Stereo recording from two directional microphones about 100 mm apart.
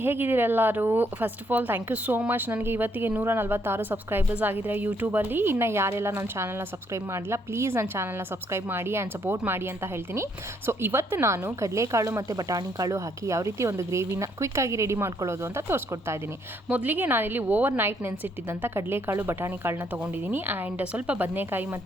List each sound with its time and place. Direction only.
0.0 s speech: 20° right (ahead or behind)